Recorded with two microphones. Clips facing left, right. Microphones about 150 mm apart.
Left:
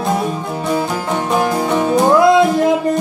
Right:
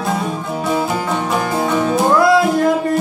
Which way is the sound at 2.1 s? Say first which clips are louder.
Left 2 dB; 20° left (ahead or behind).